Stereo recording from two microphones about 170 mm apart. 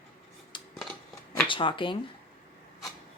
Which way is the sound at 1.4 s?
30° left (ahead or behind).